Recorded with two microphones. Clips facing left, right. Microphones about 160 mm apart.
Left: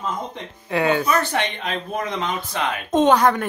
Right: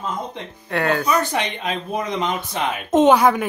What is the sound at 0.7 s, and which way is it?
Speech, centre (ahead or behind).